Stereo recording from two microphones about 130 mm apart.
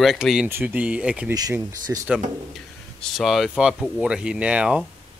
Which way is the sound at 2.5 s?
Centre (ahead or behind).